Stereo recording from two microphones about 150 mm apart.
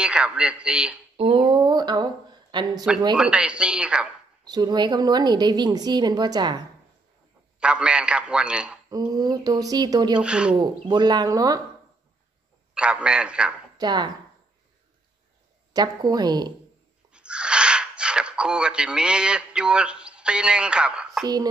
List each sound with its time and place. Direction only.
0.0 s a man's voice: 5° right (ahead or behind)
1.1 s a woman's voice: 40° right (ahead or behind)
3.2 s a man's voice: 5° right (ahead or behind)
4.5 s a woman's voice: 30° right (ahead or behind)
7.6 s a man's voice: 5° right (ahead or behind)
8.9 s a woman's voice: 25° right (ahead or behind)
10.2 s a man's voice: 5° right (ahead or behind)
10.6 s a woman's voice: 30° right (ahead or behind)
12.7 s a man's voice: 5° right (ahead or behind)
13.7 s speech: 30° right (ahead or behind)
15.7 s a woman's voice: 25° right (ahead or behind)
17.1 s a sound: 5° right (ahead or behind)